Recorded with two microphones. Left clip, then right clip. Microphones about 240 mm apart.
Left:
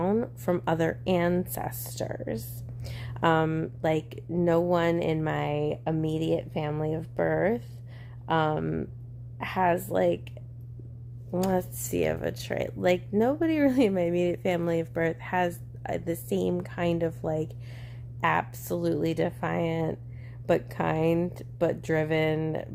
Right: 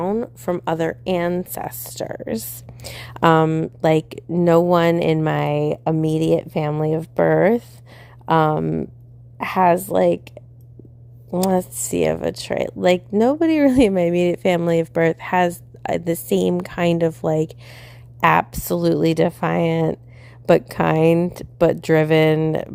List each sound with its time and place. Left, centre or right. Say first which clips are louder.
0.0 s speech: right 5 dB; right